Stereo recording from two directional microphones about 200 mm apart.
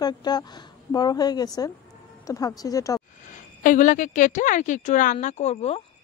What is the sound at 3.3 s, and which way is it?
A woman's voice, 40° left (ahead or behind).